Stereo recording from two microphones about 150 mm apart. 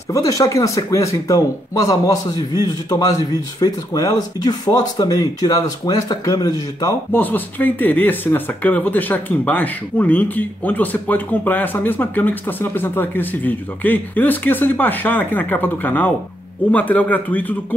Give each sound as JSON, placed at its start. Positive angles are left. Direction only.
{"t": 0.1, "sound": "speech", "side_deg": 20}
{"t": 7.1, "sound": "speech", "side_deg": 10}